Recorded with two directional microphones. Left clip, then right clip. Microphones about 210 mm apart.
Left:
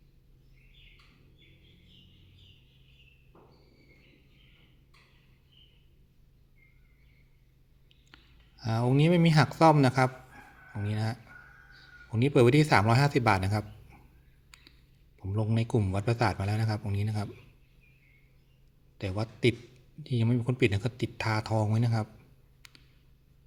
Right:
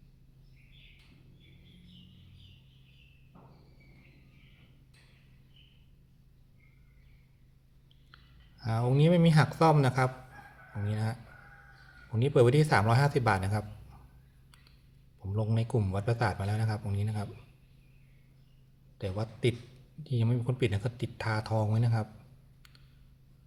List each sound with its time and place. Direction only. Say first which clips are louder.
8.1 s speech: left 1 dB; 25° left (ahead or behind)
14.5 s a sound: left 7 dB; 25° left (ahead or behind)
15.3 s speech: left 2 dB; 25° left (ahead or behind)
18.9 s speech: left 1 dB; 25° left (ahead or behind)